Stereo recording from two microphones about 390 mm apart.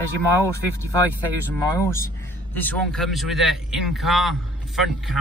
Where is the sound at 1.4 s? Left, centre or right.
Centre.